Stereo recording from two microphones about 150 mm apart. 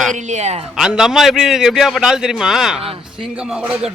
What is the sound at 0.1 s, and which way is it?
Speech, 50° right (ahead or behind).